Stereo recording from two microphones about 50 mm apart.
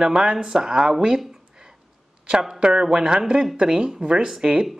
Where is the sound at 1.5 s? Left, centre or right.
Centre.